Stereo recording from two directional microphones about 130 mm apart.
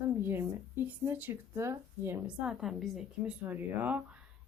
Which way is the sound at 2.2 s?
5° right (ahead or behind).